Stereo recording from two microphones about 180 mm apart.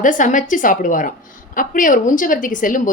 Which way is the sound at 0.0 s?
45° left (ahead or behind).